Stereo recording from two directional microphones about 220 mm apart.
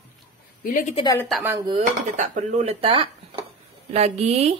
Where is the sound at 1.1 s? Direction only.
Centre (ahead or behind).